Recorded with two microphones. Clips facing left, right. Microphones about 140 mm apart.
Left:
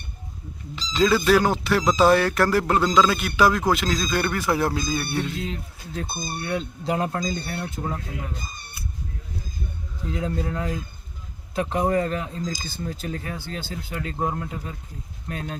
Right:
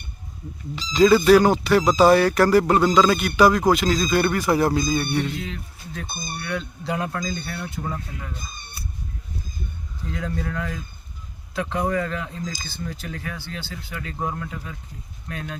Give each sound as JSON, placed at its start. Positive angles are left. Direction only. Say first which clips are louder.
{"t": 0.8, "sound": "speech", "louder": "right 5 dB", "side_deg": 0}
{"t": 5.4, "sound": "speech", "louder": "left 2 dB", "side_deg": 30}
{"t": 10.1, "sound": "speech", "louder": "left 2 dB", "side_deg": 30}
{"t": 11.8, "sound": "speech", "louder": "left 2 dB", "side_deg": 30}
{"t": 13.9, "sound": "speech", "louder": "left 2 dB", "side_deg": 35}